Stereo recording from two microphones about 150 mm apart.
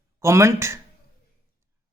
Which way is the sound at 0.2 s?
20° right (ahead or behind).